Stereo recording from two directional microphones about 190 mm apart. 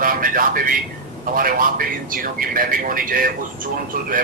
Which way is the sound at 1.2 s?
50° right (ahead or behind).